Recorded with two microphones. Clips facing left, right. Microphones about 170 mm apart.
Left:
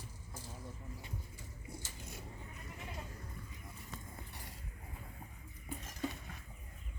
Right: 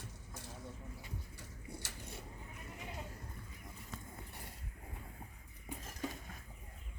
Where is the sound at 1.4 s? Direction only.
70° right (ahead or behind).